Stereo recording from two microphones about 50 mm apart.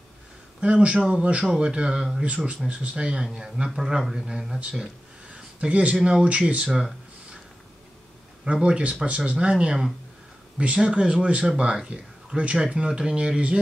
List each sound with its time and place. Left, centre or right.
0.6 s a man's voice: right
5.3 s speech: right
8.6 s speech: right